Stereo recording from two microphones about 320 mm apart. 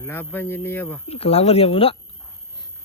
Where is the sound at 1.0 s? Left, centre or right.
Centre.